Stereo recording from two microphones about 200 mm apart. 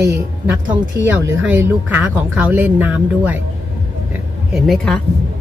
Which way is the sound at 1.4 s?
10° right (ahead or behind).